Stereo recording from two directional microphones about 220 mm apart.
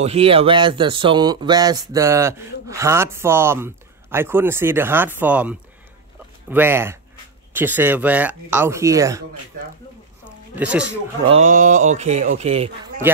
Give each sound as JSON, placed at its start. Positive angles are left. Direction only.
{"t": 0.0, "sound": "speech", "side_deg": -25}
{"t": 10.2, "sound": "a sound", "side_deg": -5}
{"t": 11.2, "sound": "speech", "side_deg": -30}
{"t": 13.0, "sound": "speech", "side_deg": -10}